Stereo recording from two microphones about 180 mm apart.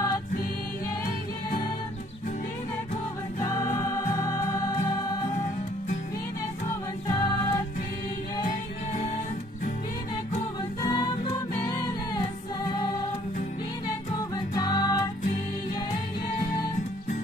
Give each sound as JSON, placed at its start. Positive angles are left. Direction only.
{"t": 3.3, "sound": "music", "side_deg": 20}
{"t": 7.1, "sound": "music", "side_deg": 25}
{"t": 10.8, "sound": "music", "side_deg": 25}
{"t": 14.3, "sound": "music", "side_deg": 20}